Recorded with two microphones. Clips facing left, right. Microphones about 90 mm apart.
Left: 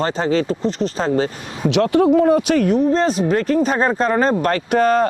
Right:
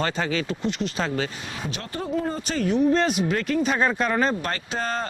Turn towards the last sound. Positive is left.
turn(degrees=60)  # may be behind; listen again after turning